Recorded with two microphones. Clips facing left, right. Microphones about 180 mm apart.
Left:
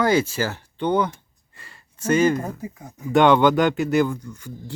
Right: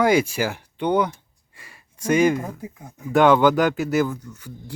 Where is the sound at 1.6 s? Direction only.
10° right (ahead or behind).